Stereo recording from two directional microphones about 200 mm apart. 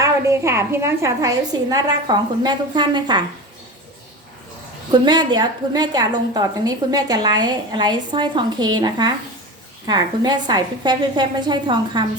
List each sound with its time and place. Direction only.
0.0 s a woman's voice: 15° right (ahead or behind)
4.9 s a woman's voice: 20° right (ahead or behind)